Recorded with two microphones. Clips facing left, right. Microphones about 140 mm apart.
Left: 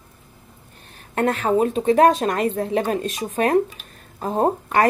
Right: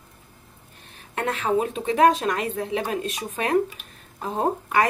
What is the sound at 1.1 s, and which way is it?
A woman's voice, 45° left (ahead or behind).